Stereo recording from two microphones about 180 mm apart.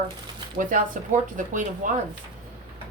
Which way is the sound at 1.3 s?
45° right (ahead or behind).